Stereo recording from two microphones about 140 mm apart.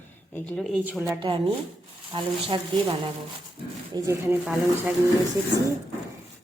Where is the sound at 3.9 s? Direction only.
20° right (ahead or behind).